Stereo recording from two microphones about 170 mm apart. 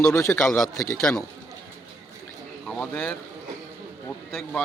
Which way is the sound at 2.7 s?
5° left (ahead or behind).